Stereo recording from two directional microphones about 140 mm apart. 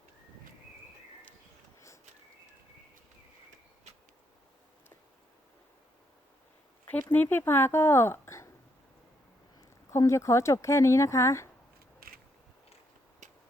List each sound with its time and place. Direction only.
7.1 s speech: 15° left (ahead or behind)
9.9 s speech: 20° left (ahead or behind)
11.9 s a sound: 90° right